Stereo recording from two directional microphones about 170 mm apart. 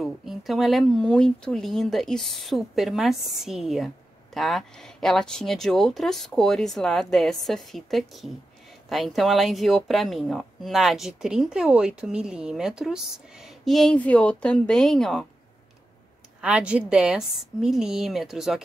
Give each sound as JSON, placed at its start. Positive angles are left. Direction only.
{"t": 0.0, "sound": "speech", "side_deg": 0}
{"t": 16.3, "sound": "speech", "side_deg": -5}